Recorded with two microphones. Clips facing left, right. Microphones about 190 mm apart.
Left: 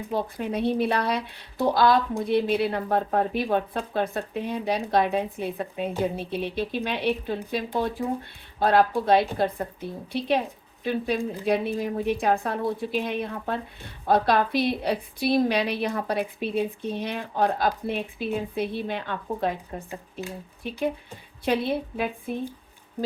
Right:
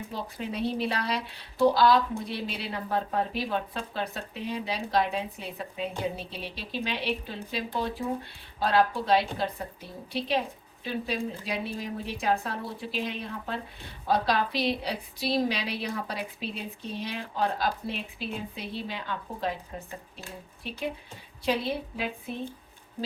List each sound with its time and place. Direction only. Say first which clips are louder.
0.1 s a woman's voice: left 10 dB; 55° left (ahead or behind)
21.4 s speech: left 4 dB; 55° left (ahead or behind)